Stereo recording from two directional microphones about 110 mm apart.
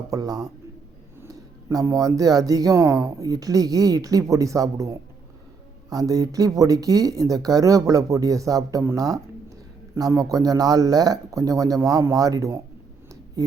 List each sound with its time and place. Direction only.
0.1 s a man's voice: 35° right (ahead or behind)